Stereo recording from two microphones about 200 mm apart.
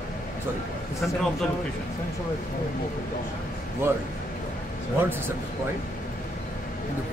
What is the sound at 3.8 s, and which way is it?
Speech, 10° right (ahead or behind).